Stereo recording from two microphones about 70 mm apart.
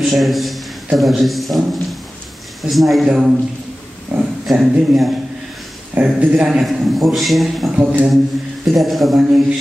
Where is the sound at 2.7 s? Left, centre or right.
Centre.